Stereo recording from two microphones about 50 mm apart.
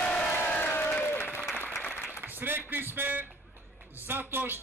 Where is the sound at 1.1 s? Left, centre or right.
Left.